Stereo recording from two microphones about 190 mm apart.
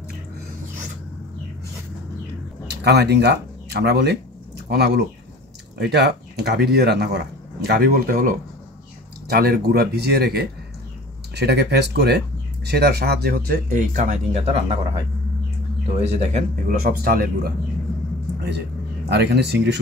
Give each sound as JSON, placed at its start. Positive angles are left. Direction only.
{"t": 2.7, "sound": "speech", "side_deg": -60}
{"t": 16.0, "sound": "speech", "side_deg": -35}
{"t": 16.8, "sound": "speech", "side_deg": -55}
{"t": 19.0, "sound": "speech", "side_deg": -60}